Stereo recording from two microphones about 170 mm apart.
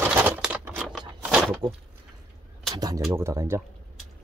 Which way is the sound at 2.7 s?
25° right (ahead or behind).